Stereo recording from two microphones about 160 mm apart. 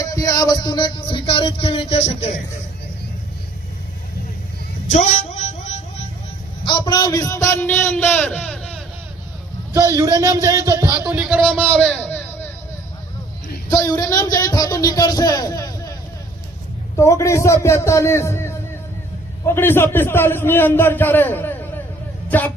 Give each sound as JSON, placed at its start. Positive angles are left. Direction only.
{"t": 0.0, "sound": "music", "side_deg": 20}
{"t": 4.9, "sound": "a sound", "side_deg": 50}
{"t": 6.7, "sound": "a man's voice", "side_deg": 30}
{"t": 9.7, "sound": "speech", "side_deg": -20}
{"t": 10.9, "sound": "speech", "side_deg": -10}
{"t": 11.8, "sound": "a sound", "side_deg": 10}
{"t": 13.7, "sound": "a man's voice", "side_deg": 20}
{"t": 17.0, "sound": "a man's voice", "side_deg": 20}
{"t": 22.3, "sound": "a sound", "side_deg": 10}